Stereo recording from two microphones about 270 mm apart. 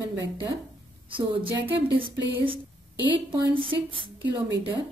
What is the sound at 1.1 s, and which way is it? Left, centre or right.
Speech, centre.